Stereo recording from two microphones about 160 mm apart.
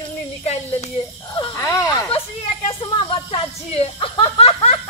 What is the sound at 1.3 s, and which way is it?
Cricket, 30° left (ahead or behind).